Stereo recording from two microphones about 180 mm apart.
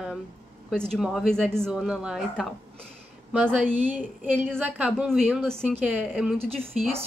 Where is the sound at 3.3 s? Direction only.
5° right (ahead or behind).